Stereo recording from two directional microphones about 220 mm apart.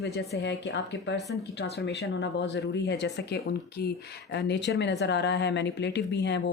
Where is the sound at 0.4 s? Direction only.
55° left (ahead or behind).